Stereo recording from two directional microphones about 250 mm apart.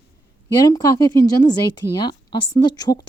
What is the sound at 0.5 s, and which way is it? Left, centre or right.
Speech, centre.